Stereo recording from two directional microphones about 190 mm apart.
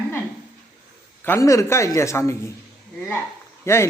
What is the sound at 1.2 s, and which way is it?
Speech, 15° left (ahead or behind).